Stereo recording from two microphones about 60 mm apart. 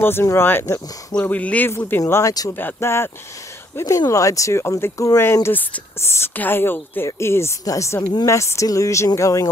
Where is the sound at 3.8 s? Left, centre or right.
Left.